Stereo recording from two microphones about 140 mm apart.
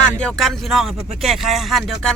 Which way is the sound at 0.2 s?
5° left (ahead or behind).